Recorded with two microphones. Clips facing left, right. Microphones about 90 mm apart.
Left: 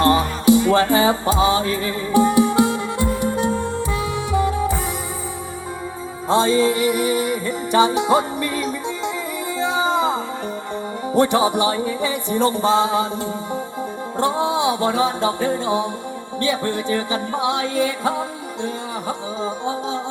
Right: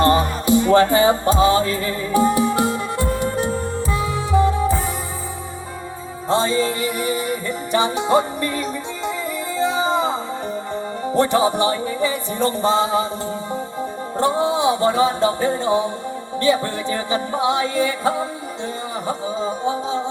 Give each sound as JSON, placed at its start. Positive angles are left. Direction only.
{"t": 0.0, "sound": "music", "side_deg": 5}
{"t": 6.3, "sound": "music", "side_deg": 10}
{"t": 9.6, "sound": "a sound", "side_deg": 10}
{"t": 11.0, "sound": "music", "side_deg": 5}